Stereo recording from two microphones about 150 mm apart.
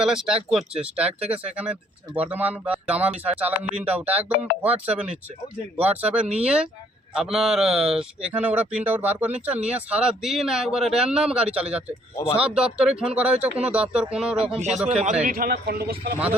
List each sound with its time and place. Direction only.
0.0 s speech: 5° right (ahead or behind)
14.8 s a man's voice: 45° right (ahead or behind)
15.2 s a man's voice: 70° right (ahead or behind); by 16.1 s 90° right